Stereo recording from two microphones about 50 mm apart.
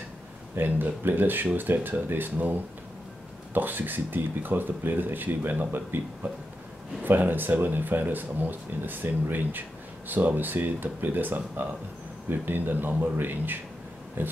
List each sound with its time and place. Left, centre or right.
0.6 s a man's voice: right